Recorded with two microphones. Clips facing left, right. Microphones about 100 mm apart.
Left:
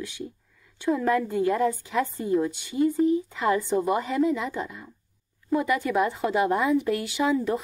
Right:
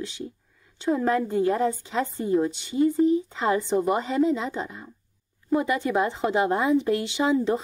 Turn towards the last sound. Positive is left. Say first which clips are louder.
# right 1 dB
turn(degrees=-25)  # may be behind; listen again after turning